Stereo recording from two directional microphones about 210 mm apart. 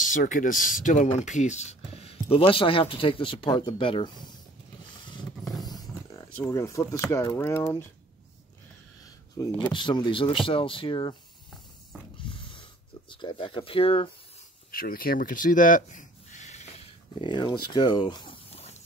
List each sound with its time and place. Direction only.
0.0 s speech: 40° left (ahead or behind); by 4.4 s 20° left (ahead or behind)
6.4 s speech: 15° left (ahead or behind)
9.4 s speech: 5° left (ahead or behind)
9.7 s speech: 20° left (ahead or behind)
12.2 s a sound: 25° left (ahead or behind)
13.1 s speech: 20° left (ahead or behind)
14.7 s a sound: 45° left (ahead or behind)